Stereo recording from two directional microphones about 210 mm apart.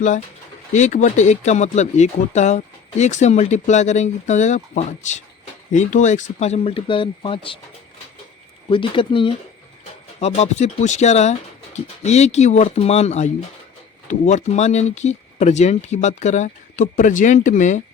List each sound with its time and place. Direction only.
0.7 s speech: 35° left (ahead or behind)
8.7 s speech: 25° left (ahead or behind)